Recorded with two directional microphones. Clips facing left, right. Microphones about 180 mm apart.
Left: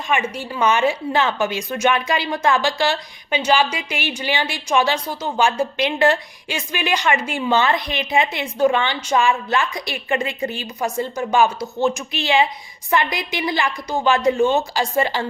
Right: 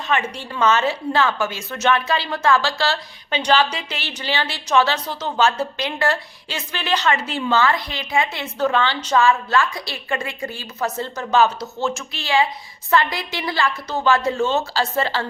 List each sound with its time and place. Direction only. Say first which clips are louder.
0.1 s a woman's voice: left 1 dB; 10° left (ahead or behind)